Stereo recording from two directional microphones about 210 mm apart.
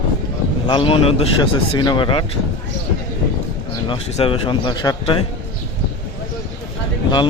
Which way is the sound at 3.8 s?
25° left (ahead or behind).